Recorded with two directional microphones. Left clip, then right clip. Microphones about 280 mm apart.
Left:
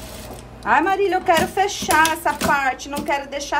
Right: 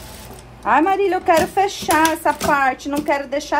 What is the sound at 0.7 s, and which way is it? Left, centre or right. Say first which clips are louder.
A woman's voice: right 2 dB; centre.